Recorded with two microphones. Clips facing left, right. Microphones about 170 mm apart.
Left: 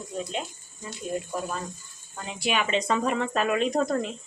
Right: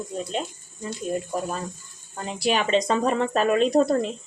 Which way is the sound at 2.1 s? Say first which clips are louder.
Right 4 dB; 35° right (ahead or behind).